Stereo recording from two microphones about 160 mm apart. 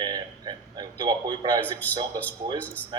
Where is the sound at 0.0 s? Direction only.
25° right (ahead or behind).